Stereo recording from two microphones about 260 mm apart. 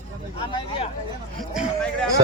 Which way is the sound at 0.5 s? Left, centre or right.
Centre.